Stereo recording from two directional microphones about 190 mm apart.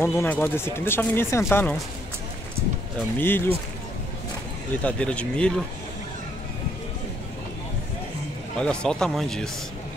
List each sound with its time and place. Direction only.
0.0 s speech: 15° left (ahead or behind)
3.2 s speech: 10° left (ahead or behind)
4.8 s speech: 5° left (ahead or behind)
8.5 s speech: 5° left (ahead or behind)